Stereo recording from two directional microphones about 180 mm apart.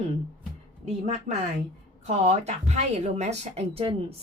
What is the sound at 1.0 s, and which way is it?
Speech, 40° right (ahead or behind).